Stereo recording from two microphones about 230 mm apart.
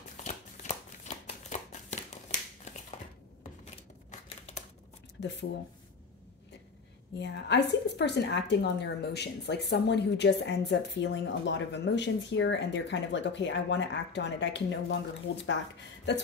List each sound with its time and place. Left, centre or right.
0.2 s shuffling cards: left
4.1 s a sound: left
5.2 s speech: left
7.2 s a woman's voice: left